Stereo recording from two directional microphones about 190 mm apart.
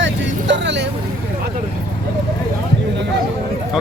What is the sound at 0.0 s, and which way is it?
Vehicle, 70° right (ahead or behind).